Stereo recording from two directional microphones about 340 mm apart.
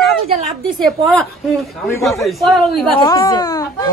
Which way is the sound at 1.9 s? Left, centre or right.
Centre.